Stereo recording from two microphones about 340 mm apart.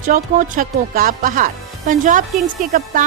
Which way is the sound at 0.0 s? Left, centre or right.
Right.